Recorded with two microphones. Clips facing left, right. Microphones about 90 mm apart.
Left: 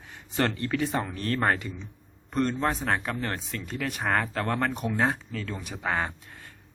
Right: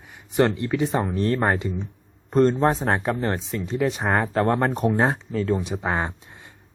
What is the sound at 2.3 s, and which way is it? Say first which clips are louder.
Speech: right 8 dB; 30° right (ahead or behind).